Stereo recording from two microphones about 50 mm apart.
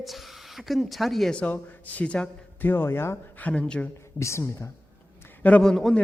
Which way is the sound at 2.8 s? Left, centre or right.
Left.